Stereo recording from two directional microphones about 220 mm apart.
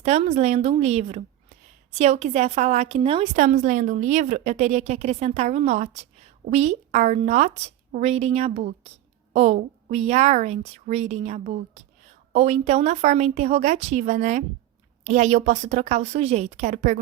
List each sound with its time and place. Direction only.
0.0 s a woman's voice: 30° right (ahead or behind)